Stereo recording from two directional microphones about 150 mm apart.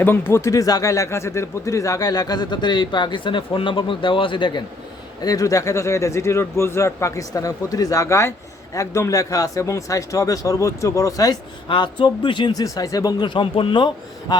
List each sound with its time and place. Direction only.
0.0 s speech: 15° left (ahead or behind); by 14.3 s 35° left (ahead or behind)